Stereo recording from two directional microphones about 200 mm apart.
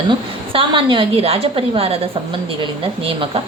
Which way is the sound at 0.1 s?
25° right (ahead or behind).